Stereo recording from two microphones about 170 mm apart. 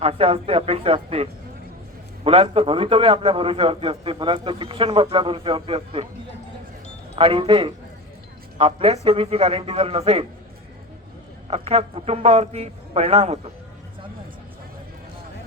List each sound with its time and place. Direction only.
0.0 s a man's voice: 35° right (ahead or behind)
7.2 s a man's voice: 35° right (ahead or behind)
11.5 s a man's voice: 35° right (ahead or behind)